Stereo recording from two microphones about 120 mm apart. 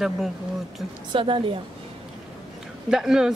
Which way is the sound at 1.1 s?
45° right (ahead or behind).